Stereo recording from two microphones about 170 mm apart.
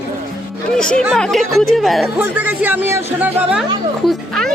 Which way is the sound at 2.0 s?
10° right (ahead or behind).